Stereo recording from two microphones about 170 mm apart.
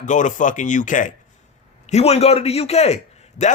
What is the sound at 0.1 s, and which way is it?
A man's voice, 45° left (ahead or behind).